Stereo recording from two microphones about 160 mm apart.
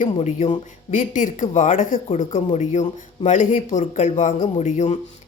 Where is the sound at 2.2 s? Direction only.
40° left (ahead or behind).